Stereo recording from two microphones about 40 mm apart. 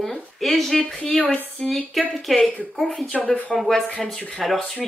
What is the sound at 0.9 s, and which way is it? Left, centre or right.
Speech, left.